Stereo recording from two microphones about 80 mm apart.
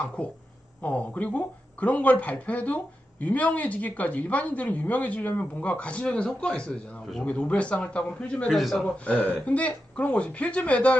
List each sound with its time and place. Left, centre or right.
0.2 s speech: centre
8.5 s speech: centre
9.0 s speech: centre